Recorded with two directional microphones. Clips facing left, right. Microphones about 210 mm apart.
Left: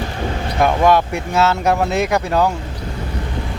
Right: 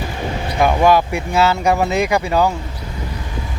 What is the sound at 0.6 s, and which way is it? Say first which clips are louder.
Speech: right 1 dB; 5° right (ahead or behind).